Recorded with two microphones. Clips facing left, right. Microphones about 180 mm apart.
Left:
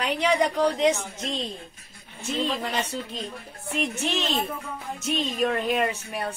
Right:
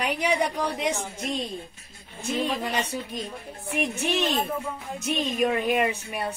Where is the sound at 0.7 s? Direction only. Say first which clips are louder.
Left 5 dB; 10° right (ahead or behind).